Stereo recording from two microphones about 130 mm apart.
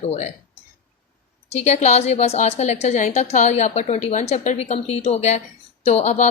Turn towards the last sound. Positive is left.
turn(degrees=60)  # may be behind; listen again after turning